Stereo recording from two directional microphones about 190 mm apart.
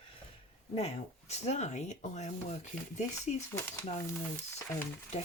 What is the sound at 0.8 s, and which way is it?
Speech, 35° left (ahead or behind).